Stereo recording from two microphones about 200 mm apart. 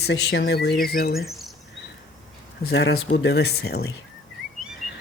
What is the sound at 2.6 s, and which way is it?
Speech, 55° left (ahead or behind).